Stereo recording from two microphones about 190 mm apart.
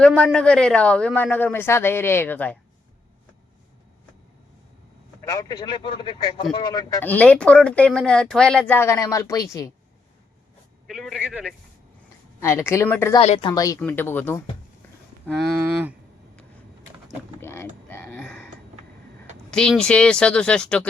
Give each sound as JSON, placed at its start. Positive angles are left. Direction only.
{"t": 0.0, "sound": "speech", "side_deg": 0}
{"t": 5.2, "sound": "speech", "side_deg": 15}
{"t": 7.0, "sound": "speech", "side_deg": 10}
{"t": 10.8, "sound": "speech", "side_deg": 0}
{"t": 12.4, "sound": "speech", "side_deg": 15}
{"t": 13.1, "sound": "speech", "side_deg": 30}
{"t": 13.5, "sound": "speech", "side_deg": 20}
{"t": 17.4, "sound": "creak", "side_deg": 15}
{"t": 17.8, "sound": "a sound", "side_deg": 10}
{"t": 19.5, "sound": "speech", "side_deg": 5}